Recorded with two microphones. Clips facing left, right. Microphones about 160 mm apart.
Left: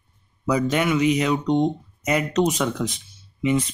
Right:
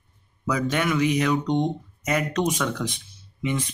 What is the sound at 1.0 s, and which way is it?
Speech, 25° left (ahead or behind).